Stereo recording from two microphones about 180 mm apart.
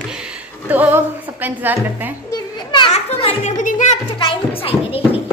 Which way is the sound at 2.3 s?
25° left (ahead or behind).